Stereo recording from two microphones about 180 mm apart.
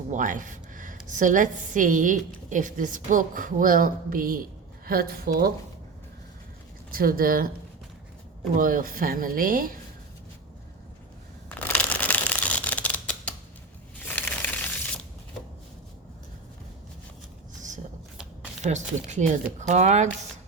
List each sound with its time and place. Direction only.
0.1 s a woman's voice: 45° right (ahead or behind)
6.9 s a woman's voice: 55° right (ahead or behind)
8.5 s a woman's voice: 50° right (ahead or behind)
11.4 s shuffling cards: 10° left (ahead or behind)
14.2 s crushing: 5° left (ahead or behind)
18.6 s a woman's voice: 40° right (ahead or behind)